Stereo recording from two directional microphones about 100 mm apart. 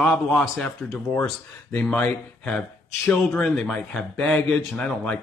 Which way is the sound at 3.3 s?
5° left (ahead or behind).